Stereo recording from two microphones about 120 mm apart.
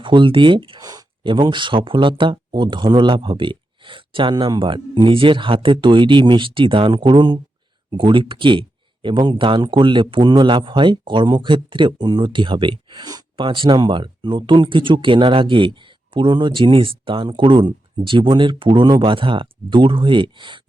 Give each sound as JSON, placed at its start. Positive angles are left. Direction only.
{"t": 0.0, "sound": "speech", "side_deg": -40}